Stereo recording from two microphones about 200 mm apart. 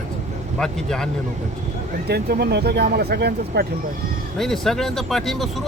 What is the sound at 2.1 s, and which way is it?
Speech, 50° right (ahead or behind).